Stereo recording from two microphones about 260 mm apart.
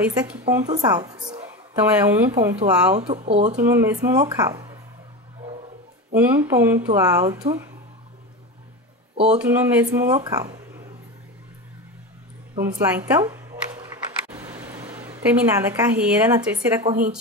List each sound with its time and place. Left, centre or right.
0.0 s a woman's voice: centre
3.0 s speech: right
3.8 s a woman's voice: centre
6.1 s a woman's voice: centre
9.1 s speech: right
9.4 s a woman's voice: centre
12.9 s a sound: centre